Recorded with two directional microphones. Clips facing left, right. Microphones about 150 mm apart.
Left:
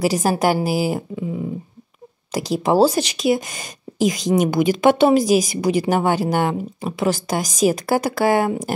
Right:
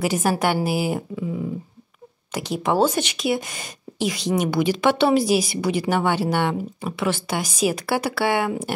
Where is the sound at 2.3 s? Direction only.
35° left (ahead or behind).